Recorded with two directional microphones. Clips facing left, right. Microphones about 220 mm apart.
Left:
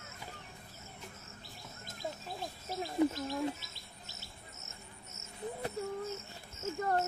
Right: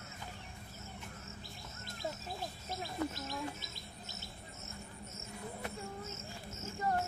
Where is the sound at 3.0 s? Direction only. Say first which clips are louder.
Left 9 dB; 15° left (ahead or behind).